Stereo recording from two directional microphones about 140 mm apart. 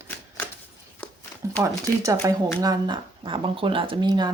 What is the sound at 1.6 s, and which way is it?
Speech, 25° right (ahead or behind).